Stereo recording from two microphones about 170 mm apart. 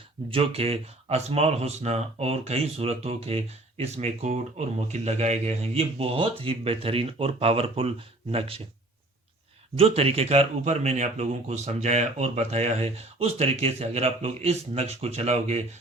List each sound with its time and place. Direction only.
0.3 s speech: 35° right (ahead or behind)
9.7 s speech: 35° right (ahead or behind)